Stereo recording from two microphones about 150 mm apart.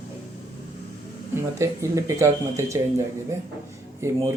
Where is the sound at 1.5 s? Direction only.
20° right (ahead or behind).